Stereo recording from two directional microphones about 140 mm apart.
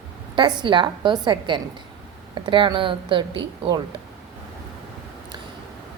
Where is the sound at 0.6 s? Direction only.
35° right (ahead or behind).